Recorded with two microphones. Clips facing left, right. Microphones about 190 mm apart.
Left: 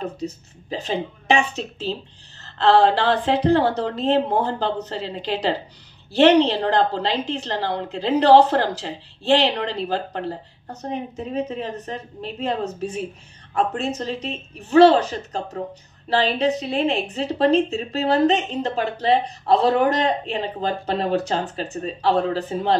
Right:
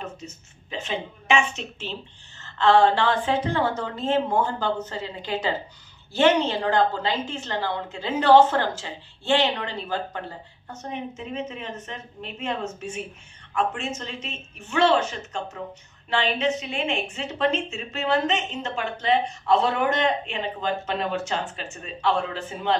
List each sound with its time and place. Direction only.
0.0 s a woman's voice: 35° left (ahead or behind)